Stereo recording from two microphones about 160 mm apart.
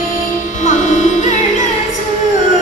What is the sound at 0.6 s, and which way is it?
Music, 45° left (ahead or behind).